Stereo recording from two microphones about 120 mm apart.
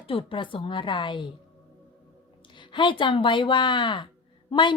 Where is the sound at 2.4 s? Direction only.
40° left (ahead or behind).